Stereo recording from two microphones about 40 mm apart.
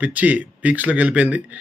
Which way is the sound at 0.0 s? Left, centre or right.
Right.